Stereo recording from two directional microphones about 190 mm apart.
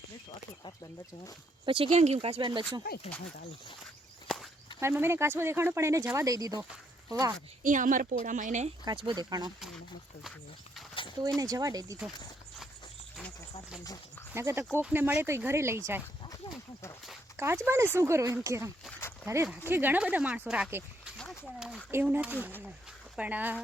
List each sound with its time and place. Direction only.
1.6 s speech: 30° right (ahead or behind)
4.8 s speech: 10° right (ahead or behind)
7.6 s speech: 45° right (ahead or behind)
8.8 s speech: 25° right (ahead or behind)
11.3 s speech: 20° right (ahead or behind)
13.1 s a sound: centre (ahead or behind)
14.3 s speech: 15° right (ahead or behind)
17.3 s speech: 15° right (ahead or behind)
18.9 s a sound: 15° left (ahead or behind)
19.2 s speech: 15° right (ahead or behind)
21.2 s a sound: centre (ahead or behind)
21.9 s speech: 10° right (ahead or behind)